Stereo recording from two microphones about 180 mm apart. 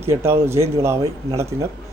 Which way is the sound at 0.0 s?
15° right (ahead or behind).